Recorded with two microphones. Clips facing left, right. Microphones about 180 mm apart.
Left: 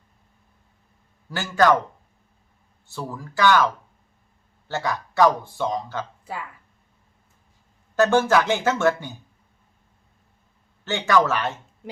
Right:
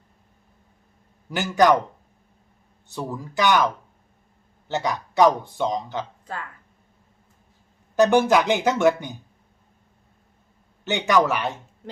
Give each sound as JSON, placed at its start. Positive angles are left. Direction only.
{"t": 1.3, "sound": "speech", "side_deg": -15}
{"t": 2.9, "sound": "speech", "side_deg": -20}
{"t": 4.7, "sound": "speech", "side_deg": -20}
{"t": 6.2, "sound": "speech", "side_deg": 10}
{"t": 7.9, "sound": "speech", "side_deg": -15}
{"t": 10.8, "sound": "speech", "side_deg": -20}